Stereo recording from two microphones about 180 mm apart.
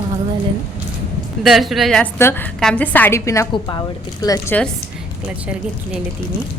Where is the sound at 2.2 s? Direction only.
15° left (ahead or behind).